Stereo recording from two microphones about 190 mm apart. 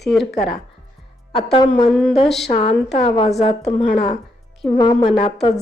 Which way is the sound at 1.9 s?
5° left (ahead or behind).